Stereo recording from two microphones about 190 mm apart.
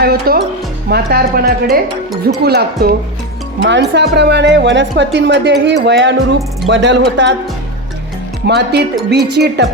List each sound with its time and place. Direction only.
0.0 s a woman's voice: 55° right (ahead or behind)
8.4 s a woman's voice: 60° right (ahead or behind)